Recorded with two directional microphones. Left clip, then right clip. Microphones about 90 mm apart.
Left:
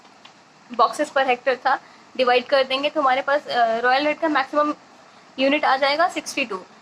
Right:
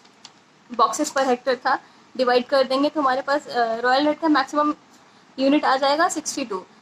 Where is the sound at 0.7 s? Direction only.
30° right (ahead or behind).